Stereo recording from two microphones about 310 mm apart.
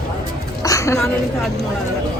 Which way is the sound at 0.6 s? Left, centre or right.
Centre.